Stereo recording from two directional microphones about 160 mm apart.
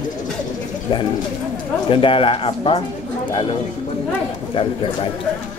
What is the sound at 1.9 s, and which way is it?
Speech, 35° left (ahead or behind).